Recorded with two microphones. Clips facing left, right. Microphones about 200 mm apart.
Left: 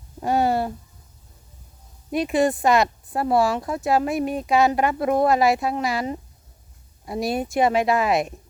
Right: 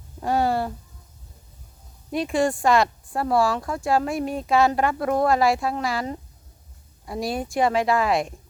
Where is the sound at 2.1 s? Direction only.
20° left (ahead or behind).